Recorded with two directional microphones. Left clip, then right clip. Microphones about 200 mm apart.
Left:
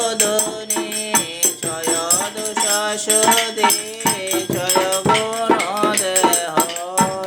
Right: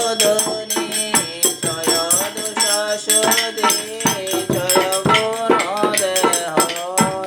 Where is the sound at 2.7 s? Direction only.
40° left (ahead or behind).